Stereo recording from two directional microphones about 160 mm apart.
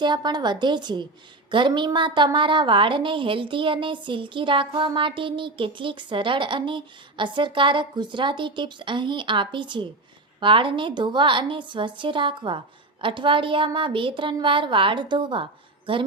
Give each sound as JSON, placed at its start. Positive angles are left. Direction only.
{"t": 0.0, "sound": "a woman's voice", "side_deg": -25}